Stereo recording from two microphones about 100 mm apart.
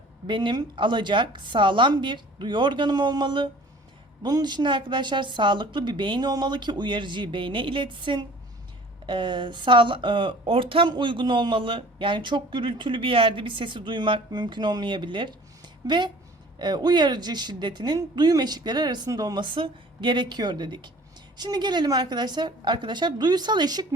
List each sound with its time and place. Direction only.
0.3 s a man's voice: 50° right (ahead or behind)
10.8 s a man's voice: 50° right (ahead or behind)
19.5 s a man's voice: 55° right (ahead or behind)